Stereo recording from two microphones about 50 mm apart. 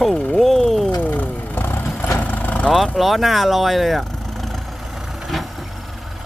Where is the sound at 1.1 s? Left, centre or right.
Left.